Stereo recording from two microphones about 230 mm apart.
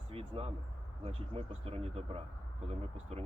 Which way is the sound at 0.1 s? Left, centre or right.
Right.